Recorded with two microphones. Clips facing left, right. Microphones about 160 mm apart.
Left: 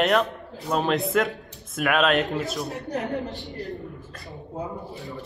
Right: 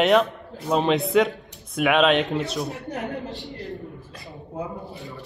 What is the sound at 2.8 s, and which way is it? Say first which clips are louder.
Speech: left 2 dB; 40° left (ahead or behind).